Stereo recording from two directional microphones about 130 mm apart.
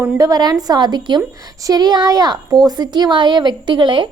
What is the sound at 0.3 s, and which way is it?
A woman's voice, 30° right (ahead or behind).